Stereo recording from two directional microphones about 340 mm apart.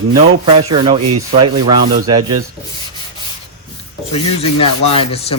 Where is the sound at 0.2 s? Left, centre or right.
Centre.